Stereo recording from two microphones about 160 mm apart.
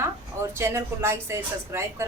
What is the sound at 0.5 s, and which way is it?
A woman's voice, 15° right (ahead or behind).